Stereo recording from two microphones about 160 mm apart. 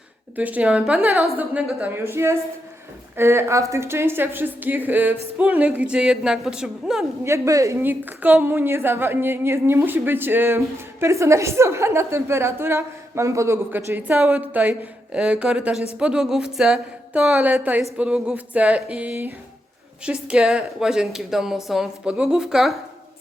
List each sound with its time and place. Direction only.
0.3 s a woman's voice: 10° right (ahead or behind)
7.3 s a woman's voice: 20° right (ahead or behind); by 22.8 s centre (ahead or behind)